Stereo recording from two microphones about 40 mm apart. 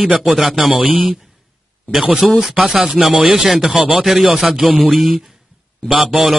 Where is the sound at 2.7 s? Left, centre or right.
Centre.